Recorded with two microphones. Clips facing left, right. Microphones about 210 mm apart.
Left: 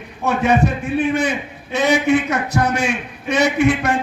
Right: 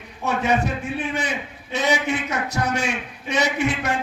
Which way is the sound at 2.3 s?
55° left (ahead or behind).